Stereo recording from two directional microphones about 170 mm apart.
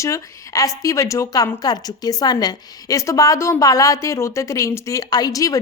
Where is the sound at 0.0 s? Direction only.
20° left (ahead or behind).